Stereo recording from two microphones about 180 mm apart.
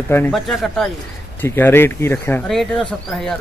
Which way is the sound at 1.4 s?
10° left (ahead or behind).